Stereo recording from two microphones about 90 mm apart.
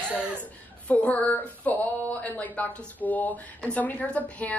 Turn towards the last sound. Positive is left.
turn(degrees=15)  # may be behind; listen again after turning